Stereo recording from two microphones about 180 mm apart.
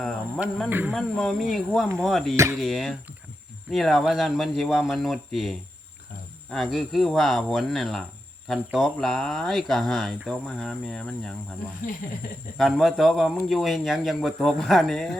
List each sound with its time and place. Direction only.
0.0 s speech: centre (ahead or behind)
0.7 s speech: 10° right (ahead or behind)
0.9 s speech: centre (ahead or behind)
2.3 s speech: 15° right (ahead or behind)
2.6 s speech: centre (ahead or behind)
12.5 s speech: centre (ahead or behind)